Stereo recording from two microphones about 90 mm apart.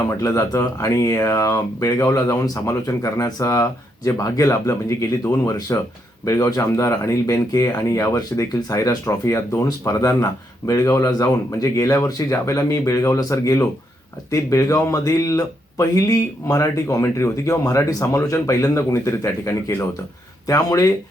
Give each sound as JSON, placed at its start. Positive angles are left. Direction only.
{"t": 0.0, "sound": "speech", "side_deg": 35}